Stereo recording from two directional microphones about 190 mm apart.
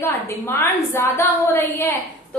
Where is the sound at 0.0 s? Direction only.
15° left (ahead or behind).